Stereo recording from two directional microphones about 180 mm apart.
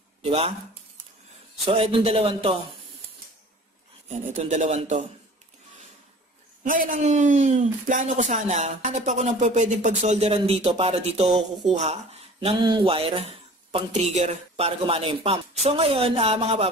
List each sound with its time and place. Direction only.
0.2 s speech: 35° right (ahead or behind)
1.7 s speech: 30° right (ahead or behind)
4.4 s speech: 40° right (ahead or behind)
6.6 s speech: 45° right (ahead or behind)
11.2 s speech: centre (ahead or behind)
11.7 s speech: 35° right (ahead or behind)